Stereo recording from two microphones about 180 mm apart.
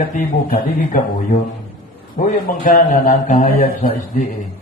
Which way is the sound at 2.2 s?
45° left (ahead or behind).